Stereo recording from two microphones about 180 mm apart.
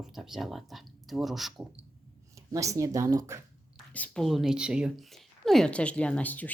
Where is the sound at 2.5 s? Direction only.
20° right (ahead or behind).